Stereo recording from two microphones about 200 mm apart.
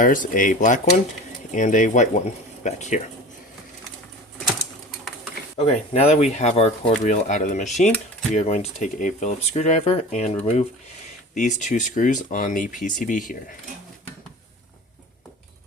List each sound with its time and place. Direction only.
0.0 s speech: 45° left (ahead or behind)
5.5 s speech: 30° left (ahead or behind)